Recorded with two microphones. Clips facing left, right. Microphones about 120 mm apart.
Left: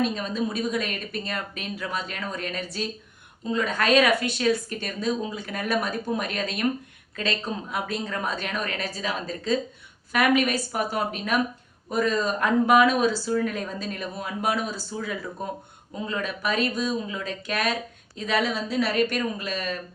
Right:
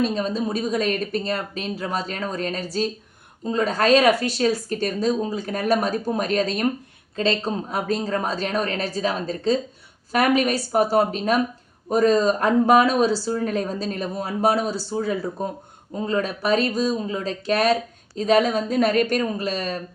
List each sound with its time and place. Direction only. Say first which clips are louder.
0.0 s speech: right 3 dB; 35° right (ahead or behind)